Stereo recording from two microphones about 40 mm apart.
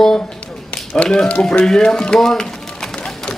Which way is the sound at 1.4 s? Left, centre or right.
Left.